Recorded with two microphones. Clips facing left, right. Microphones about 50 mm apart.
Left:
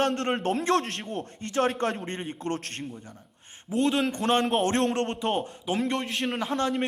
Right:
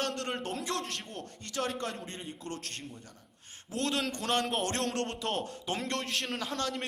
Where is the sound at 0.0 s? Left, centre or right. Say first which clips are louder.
Left 8 dB; left.